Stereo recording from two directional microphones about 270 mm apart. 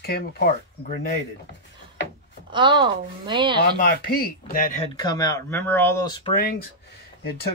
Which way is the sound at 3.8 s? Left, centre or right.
Left.